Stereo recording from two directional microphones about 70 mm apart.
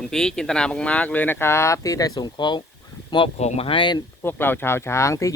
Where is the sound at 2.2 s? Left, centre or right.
Left.